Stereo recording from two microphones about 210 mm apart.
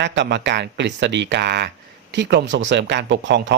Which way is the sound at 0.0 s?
60° right (ahead or behind).